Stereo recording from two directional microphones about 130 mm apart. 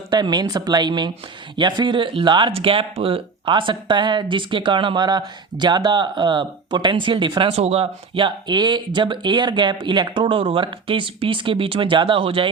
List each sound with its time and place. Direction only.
0.1 s speech: 35° right (ahead or behind)